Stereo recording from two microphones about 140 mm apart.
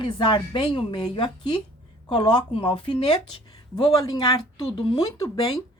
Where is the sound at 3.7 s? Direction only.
25° left (ahead or behind).